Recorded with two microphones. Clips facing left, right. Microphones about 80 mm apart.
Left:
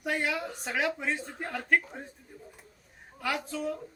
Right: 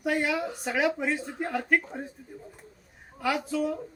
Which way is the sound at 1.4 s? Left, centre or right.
Centre.